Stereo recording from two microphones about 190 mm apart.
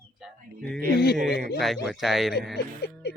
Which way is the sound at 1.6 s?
Centre (ahead or behind).